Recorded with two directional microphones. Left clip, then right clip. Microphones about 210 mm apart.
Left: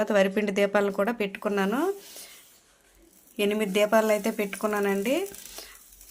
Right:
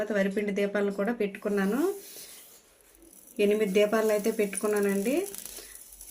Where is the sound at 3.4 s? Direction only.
35° left (ahead or behind).